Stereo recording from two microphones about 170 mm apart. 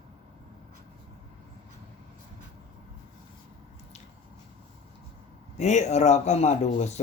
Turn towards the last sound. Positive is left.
turn(degrees=40)  # may be behind; listen again after turning